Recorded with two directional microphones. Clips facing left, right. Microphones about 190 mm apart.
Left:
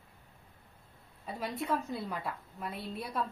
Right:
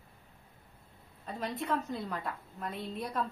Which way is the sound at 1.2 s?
10° left (ahead or behind).